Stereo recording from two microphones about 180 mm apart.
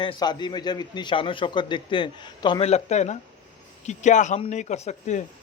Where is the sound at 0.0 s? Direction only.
25° left (ahead or behind).